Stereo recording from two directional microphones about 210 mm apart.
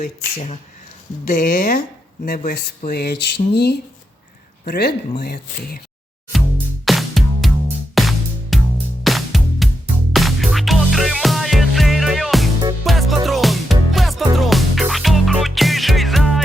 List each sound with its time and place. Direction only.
0.0 s speech: 30° left (ahead or behind); by 5.8 s 50° left (ahead or behind)
6.8 s music: centre (ahead or behind)